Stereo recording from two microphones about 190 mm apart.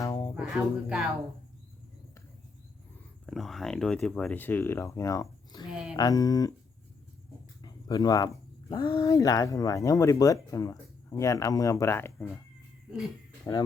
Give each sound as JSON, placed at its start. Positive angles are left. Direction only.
{"t": 0.0, "sound": "music", "side_deg": 20}
{"t": 0.3, "sound": "speech", "side_deg": -5}
{"t": 3.2, "sound": "speech", "side_deg": 0}
{"t": 7.6, "sound": "a sound", "side_deg": 20}
{"t": 8.7, "sound": "speech", "side_deg": 20}